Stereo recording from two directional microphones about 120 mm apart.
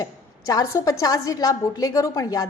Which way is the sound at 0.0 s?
30° left (ahead or behind).